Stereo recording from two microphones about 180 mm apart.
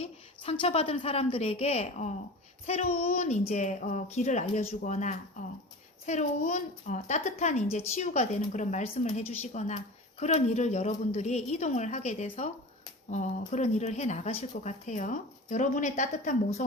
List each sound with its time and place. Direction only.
0.6 s a woman's voice: 30° left (ahead or behind)